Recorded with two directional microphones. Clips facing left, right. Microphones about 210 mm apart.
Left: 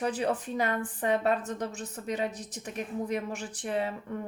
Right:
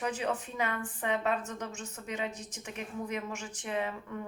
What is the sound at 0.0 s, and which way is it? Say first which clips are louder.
A woman's voice: left 4 dB; 35° left (ahead or behind).